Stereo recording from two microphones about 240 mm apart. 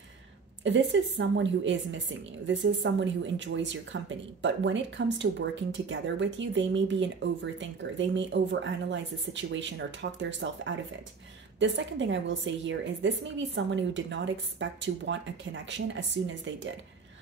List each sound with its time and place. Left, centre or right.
0.7 s speech: right